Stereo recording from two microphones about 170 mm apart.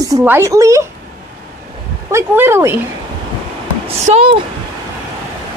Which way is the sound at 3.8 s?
35° right (ahead or behind).